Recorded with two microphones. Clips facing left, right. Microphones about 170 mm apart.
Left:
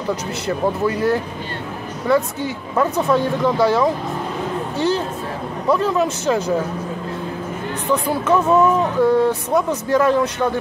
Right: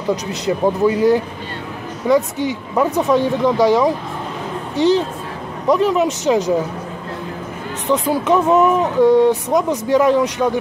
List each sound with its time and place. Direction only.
0.1 s speech: 15° right (ahead or behind)
7.9 s speech: 20° right (ahead or behind)